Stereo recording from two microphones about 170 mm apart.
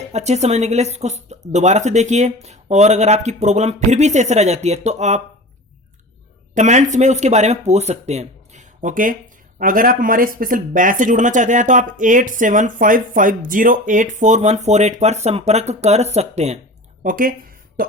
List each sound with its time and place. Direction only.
0.1 s speech: 40° right (ahead or behind)
6.5 s speech: 45° right (ahead or behind)
17.0 s a woman's voice: 50° right (ahead or behind)